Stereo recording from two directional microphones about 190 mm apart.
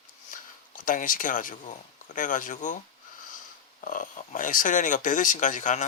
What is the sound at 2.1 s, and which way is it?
Speech, 45° left (ahead or behind).